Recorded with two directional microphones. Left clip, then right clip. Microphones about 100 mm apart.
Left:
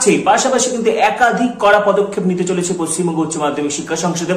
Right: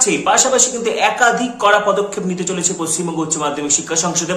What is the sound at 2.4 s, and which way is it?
Speech, 5° right (ahead or behind).